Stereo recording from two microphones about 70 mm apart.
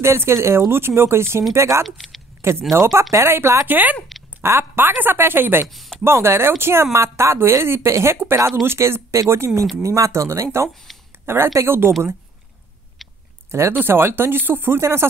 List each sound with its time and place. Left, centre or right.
0.0 s a woman's voice: right
3.6 s speech: right
4.4 s a woman's voice: right
5.7 s a sound: centre
6.0 s a woman's voice: right
9.6 s speech: centre
9.8 s speech: right
10.9 s a sound: centre
11.2 s a woman's voice: right
13.0 s a sound: centre
13.5 s a woman's voice: right